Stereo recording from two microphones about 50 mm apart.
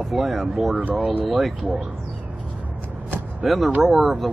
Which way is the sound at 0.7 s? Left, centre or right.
Right.